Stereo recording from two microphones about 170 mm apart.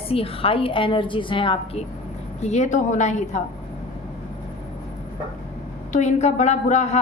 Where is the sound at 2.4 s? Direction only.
45° left (ahead or behind).